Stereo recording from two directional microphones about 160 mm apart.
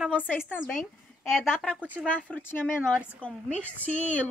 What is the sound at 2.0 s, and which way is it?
Speech, 10° left (ahead or behind).